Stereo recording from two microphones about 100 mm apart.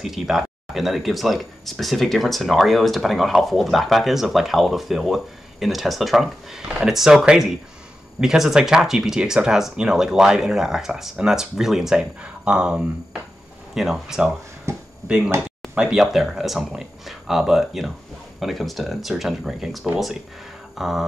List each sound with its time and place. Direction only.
0.0 s speech: 5° right (ahead or behind)
14.7 s a sound: 30° right (ahead or behind)
15.0 s speech: 10° right (ahead or behind)